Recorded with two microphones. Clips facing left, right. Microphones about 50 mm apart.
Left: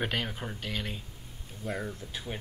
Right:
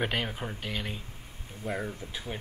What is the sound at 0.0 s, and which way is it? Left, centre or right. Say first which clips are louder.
Speech: right 2 dB; centre.